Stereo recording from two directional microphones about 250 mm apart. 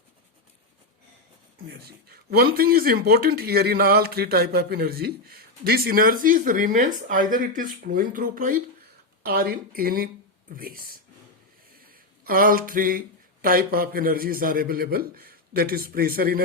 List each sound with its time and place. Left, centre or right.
1.8 s speech: right
11.7 s a sound: right
13.4 s speech: right